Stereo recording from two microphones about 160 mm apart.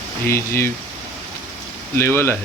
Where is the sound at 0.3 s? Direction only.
15° left (ahead or behind).